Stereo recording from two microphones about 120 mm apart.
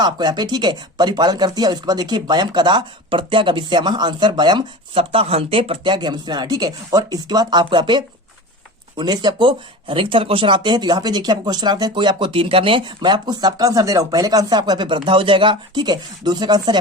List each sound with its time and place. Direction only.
0.0 s speech: 35° right (ahead or behind)